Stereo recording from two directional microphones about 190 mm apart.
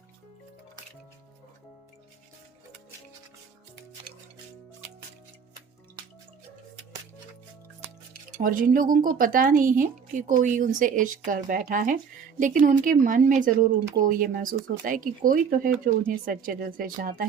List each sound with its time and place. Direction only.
8.4 s speech: 45° right (ahead or behind)